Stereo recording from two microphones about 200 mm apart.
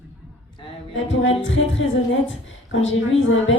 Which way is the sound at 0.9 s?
70° left (ahead or behind).